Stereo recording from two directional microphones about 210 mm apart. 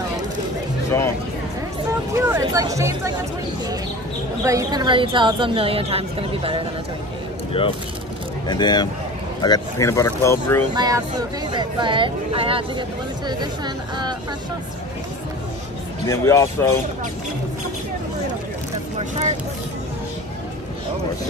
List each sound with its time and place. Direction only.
1.9 s a sound: 15° right (ahead or behind)
4.5 s a woman's voice: 15° right (ahead or behind)
7.5 s speech: 25° left (ahead or behind); by 10.6 s 10° left (ahead or behind)
10.7 s a woman's voice: 20° right (ahead or behind)
16.1 s speech: 15° left (ahead or behind)
18.9 s speech: 30° right (ahead or behind)